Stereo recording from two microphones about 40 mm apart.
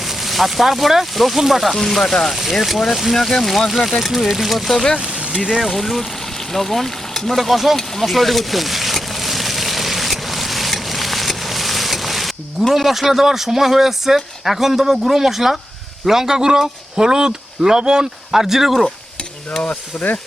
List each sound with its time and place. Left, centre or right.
0.3 s speech: centre
1.7 s speech: centre
7.8 s a sound: centre
12.7 s speech: centre
18.3 s speech: centre